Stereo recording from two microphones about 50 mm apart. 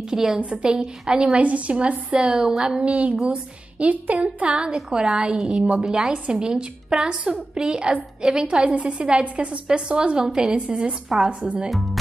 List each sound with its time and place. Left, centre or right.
0.1 s a woman's voice: centre
0.4 s a woman's voice: right
1.4 s a woman's voice: right
2.1 s a woman's voice: centre
8.7 s a woman's voice: right